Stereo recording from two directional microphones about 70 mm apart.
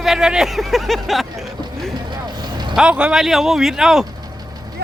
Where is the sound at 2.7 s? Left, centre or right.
Centre.